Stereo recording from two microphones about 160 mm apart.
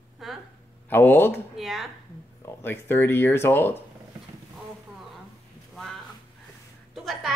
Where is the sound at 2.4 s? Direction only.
15° left (ahead or behind).